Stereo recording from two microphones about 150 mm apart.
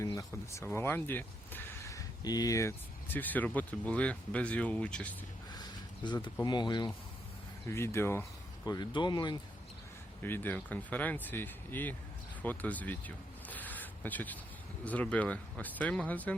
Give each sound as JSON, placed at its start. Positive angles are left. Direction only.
{"t": 0.0, "sound": "speech", "side_deg": 20}
{"t": 5.5, "sound": "a sound", "side_deg": 30}
{"t": 6.4, "sound": "speech", "side_deg": 30}
{"t": 7.7, "sound": "speech", "side_deg": 15}
{"t": 8.6, "sound": "speech", "side_deg": 30}
{"t": 10.2, "sound": "speech", "side_deg": 15}
{"t": 12.4, "sound": "a sound", "side_deg": 10}
{"t": 14.8, "sound": "speech", "side_deg": 10}